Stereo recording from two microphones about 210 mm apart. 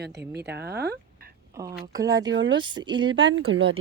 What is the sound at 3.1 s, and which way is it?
Speech, 65° right (ahead or behind).